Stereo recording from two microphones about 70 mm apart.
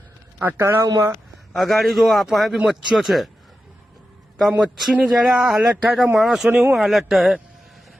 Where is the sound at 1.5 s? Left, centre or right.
Centre.